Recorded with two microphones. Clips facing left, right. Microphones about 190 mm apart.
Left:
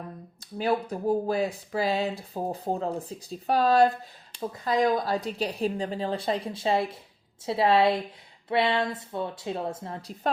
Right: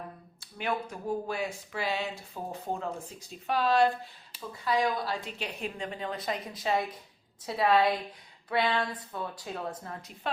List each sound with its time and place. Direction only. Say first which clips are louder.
0.3 s speech: left 6 dB; 35° left (ahead or behind)